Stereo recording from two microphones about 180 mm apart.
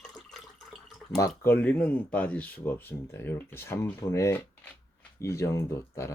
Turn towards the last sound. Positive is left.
turn(degrees=15)  # may be behind; listen again after turning